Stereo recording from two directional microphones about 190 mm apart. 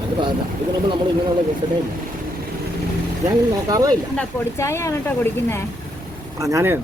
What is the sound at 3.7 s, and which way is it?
Speech, 20° right (ahead or behind).